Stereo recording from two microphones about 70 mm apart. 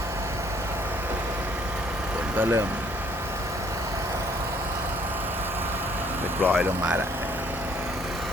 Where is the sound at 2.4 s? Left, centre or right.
Right.